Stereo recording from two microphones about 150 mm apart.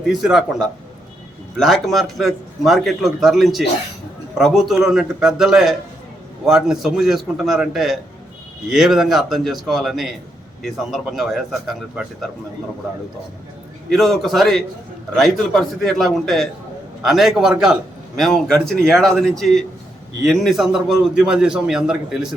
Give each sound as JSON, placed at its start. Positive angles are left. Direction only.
{"t": 0.1, "sound": "a man's voice", "side_deg": -5}
{"t": 1.5, "sound": "a man's voice", "side_deg": 0}
{"t": 13.9, "sound": "a man's voice", "side_deg": 0}